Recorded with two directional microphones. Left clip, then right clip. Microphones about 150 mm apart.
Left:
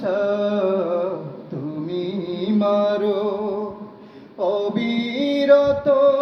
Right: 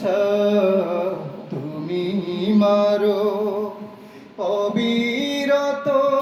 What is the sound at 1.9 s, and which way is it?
Music, 25° left (ahead or behind).